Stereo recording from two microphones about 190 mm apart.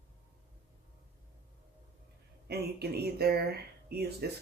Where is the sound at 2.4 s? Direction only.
60° right (ahead or behind).